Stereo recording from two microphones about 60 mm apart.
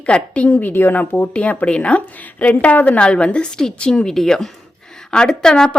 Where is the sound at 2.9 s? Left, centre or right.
Centre.